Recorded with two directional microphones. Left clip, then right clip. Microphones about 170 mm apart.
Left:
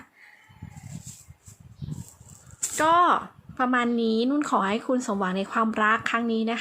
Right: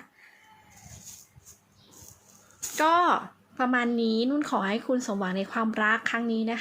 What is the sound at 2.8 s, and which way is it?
A woman's voice, 15° left (ahead or behind).